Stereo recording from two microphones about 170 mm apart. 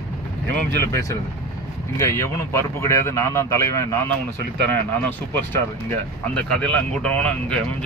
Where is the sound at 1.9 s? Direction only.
15° left (ahead or behind).